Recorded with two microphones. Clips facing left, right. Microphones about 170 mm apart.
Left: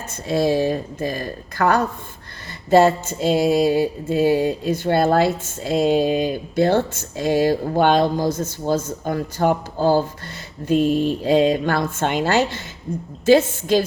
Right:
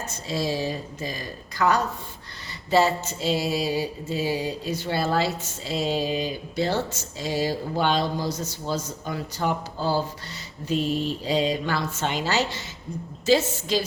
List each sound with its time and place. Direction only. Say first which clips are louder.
0.1 s speech: left 10 dB; 55° left (ahead or behind)
2.6 s a sound: left 7 dB; 50° left (ahead or behind)
13.2 s speech: left 6 dB; 55° left (ahead or behind)